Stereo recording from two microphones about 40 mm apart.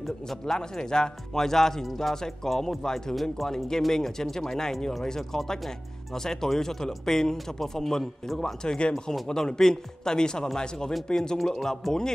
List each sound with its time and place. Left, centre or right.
0.0 s speech: centre
0.6 s speech: centre
8.6 s speech: left
11.4 s speech: centre